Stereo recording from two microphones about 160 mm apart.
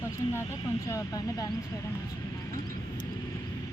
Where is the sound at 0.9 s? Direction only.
20° left (ahead or behind).